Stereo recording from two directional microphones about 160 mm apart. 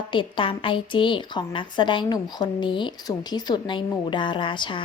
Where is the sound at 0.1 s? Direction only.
30° left (ahead or behind).